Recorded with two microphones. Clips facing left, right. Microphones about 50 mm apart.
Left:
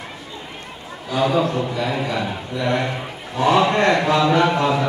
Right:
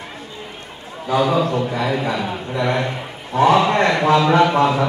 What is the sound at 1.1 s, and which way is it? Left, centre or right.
A man's voice, right.